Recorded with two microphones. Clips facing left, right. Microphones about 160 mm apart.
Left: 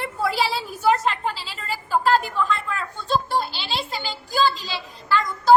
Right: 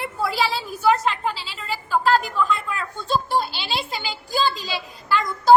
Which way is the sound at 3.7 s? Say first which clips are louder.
Right 1 dB; 10° right (ahead or behind).